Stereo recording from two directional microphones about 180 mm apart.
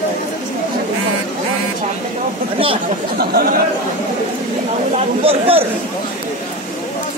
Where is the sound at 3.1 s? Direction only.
55° right (ahead or behind).